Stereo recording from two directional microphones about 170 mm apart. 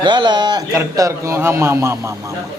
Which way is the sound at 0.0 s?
25° right (ahead or behind).